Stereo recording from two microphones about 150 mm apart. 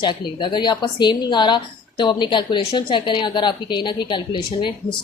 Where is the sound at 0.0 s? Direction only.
30° left (ahead or behind).